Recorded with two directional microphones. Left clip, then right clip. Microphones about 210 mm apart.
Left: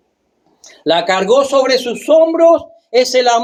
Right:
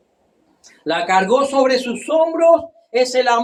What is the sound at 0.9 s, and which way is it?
A man's voice, 45° left (ahead or behind).